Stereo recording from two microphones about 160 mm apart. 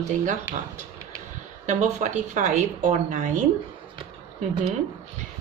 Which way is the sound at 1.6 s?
50° right (ahead or behind).